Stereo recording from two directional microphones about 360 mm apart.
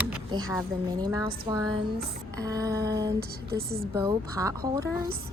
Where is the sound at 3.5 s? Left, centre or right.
Right.